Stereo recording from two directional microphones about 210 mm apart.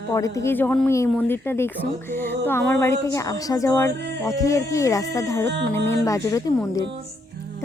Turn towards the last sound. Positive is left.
turn(degrees=15)  # may be behind; listen again after turning